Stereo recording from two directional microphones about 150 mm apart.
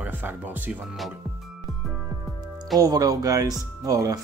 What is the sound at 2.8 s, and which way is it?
Speech, 25° right (ahead or behind).